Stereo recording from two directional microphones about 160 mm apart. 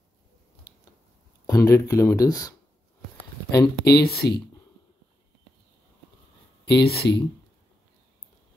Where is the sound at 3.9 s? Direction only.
80° left.